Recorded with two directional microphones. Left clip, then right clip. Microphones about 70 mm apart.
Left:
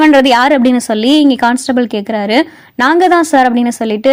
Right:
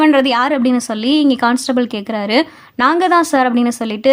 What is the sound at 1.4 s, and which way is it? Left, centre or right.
A woman's voice, left.